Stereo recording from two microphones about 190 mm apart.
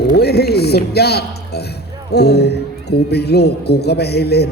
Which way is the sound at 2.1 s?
60° left (ahead or behind).